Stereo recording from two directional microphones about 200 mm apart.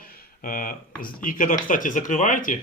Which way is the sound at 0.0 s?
45° left (ahead or behind).